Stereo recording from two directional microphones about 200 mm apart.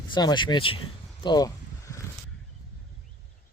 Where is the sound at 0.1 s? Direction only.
20° left (ahead or behind).